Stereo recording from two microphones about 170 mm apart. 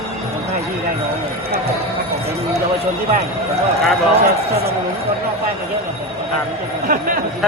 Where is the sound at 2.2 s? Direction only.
35° right (ahead or behind).